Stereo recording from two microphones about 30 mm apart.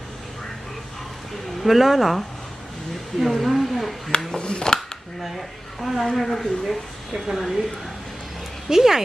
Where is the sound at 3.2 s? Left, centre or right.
Centre.